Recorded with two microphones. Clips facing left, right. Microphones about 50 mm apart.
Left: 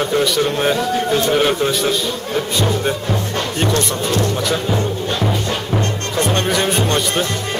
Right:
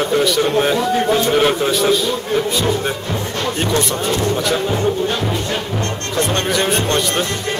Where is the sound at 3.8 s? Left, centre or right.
Centre.